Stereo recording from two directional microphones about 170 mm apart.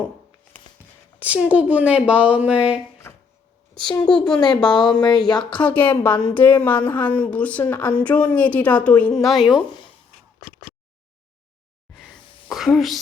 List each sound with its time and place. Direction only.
1.2 s a woman's voice: 10° right (ahead or behind)
3.8 s speech: 25° left (ahead or behind)
5.5 s a woman's voice: 10° left (ahead or behind)
11.9 s a sound: centre (ahead or behind)